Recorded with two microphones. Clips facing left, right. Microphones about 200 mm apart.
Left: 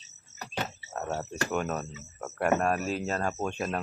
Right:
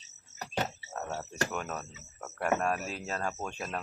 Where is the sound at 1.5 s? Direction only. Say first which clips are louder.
Left 6 dB; 5° left (ahead or behind).